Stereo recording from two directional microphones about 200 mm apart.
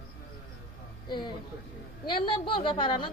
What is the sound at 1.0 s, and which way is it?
A woman's voice, 20° left (ahead or behind).